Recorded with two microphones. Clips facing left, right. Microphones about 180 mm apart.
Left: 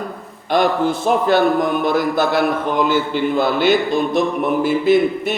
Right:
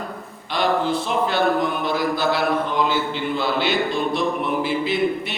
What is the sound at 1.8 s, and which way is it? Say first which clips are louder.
A man's voice: left 5 dB; 50° left (ahead or behind).